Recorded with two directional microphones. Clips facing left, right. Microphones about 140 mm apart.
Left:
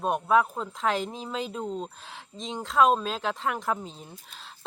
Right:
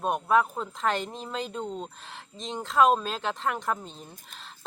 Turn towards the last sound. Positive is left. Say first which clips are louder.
# even
turn(degrees=0)  # may be behind; listen again after turning